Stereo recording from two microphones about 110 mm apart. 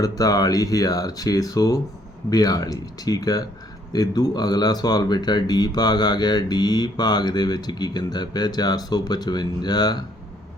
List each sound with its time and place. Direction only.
0.0 s speech: 35° left (ahead or behind)